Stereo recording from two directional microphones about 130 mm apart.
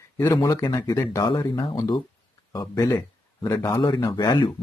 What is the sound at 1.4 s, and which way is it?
Speech, 25° left (ahead or behind).